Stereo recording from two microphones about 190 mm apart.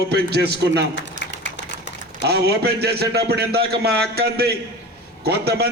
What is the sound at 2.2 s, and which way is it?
A man's voice, 60° right (ahead or behind).